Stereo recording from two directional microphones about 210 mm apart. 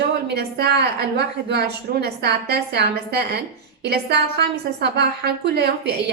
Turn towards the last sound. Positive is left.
turn(degrees=-50)  # may be behind; listen again after turning